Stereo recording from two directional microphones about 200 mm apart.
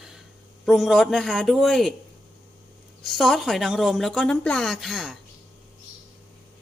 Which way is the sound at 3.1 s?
Centre (ahead or behind).